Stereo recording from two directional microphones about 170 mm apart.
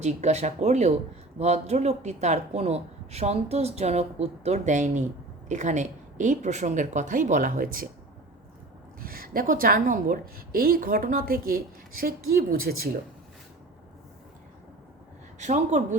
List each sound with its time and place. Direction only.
0.0 s speech: 40° right (ahead or behind)
9.0 s a woman's voice: 60° right (ahead or behind)
15.4 s speech: 45° right (ahead or behind)